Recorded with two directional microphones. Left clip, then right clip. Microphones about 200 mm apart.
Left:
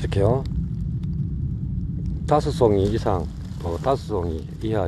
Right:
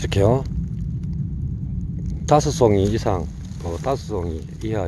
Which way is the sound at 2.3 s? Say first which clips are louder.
Right 2 dB; 25° right (ahead or behind).